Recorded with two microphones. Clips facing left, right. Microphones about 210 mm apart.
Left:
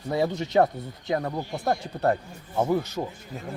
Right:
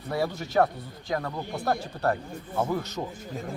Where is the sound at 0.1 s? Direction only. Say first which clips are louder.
Left 4 dB; 20° left (ahead or behind).